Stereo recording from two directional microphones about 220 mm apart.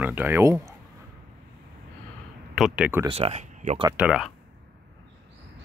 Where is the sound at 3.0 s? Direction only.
25° right (ahead or behind).